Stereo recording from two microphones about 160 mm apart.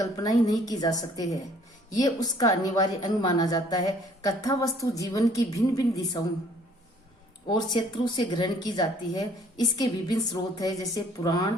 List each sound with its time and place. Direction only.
0.0 s a woman's voice: 25° left (ahead or behind)
7.5 s a woman's voice: 25° left (ahead or behind)